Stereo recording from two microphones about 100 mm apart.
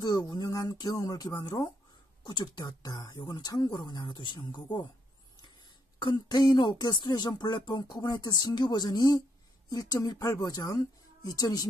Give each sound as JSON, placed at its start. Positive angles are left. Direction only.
{"t": 0.0, "sound": "a woman's voice", "side_deg": 40}
{"t": 5.9, "sound": "a woman's voice", "side_deg": 50}